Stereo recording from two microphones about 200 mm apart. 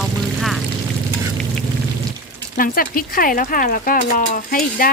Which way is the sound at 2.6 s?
45° left (ahead or behind).